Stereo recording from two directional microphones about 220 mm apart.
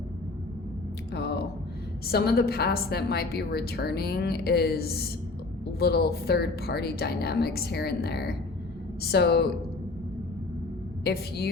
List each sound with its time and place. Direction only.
1.1 s a sound: 50° left (ahead or behind)
2.0 s a woman's voice: 45° left (ahead or behind)
11.0 s a woman's voice: 45° left (ahead or behind)